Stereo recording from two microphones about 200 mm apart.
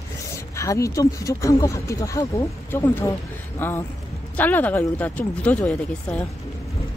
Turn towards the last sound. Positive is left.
turn(degrees=5)  # may be behind; listen again after turning